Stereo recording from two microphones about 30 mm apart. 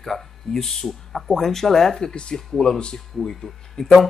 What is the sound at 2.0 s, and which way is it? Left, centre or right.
Speech, left.